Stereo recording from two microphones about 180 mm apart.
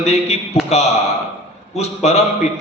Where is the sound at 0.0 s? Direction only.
35° left (ahead or behind).